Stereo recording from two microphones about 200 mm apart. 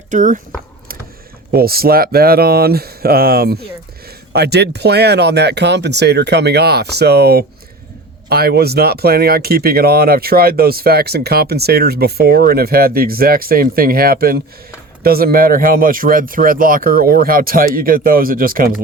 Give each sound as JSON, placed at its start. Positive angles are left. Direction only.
{"t": 0.1, "sound": "speech", "side_deg": -40}
{"t": 1.5, "sound": "speech", "side_deg": -50}